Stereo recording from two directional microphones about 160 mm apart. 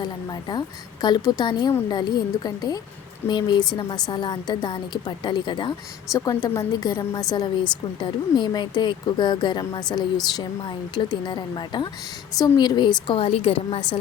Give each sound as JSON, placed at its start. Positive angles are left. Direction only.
{"t": 0.0, "sound": "a woman's voice", "side_deg": 25}